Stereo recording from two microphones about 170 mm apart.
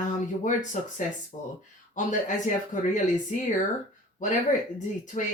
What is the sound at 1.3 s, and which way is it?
Speech, 35° left (ahead or behind).